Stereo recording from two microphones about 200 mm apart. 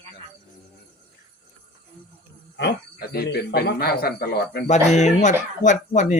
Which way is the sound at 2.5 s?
55° left (ahead or behind).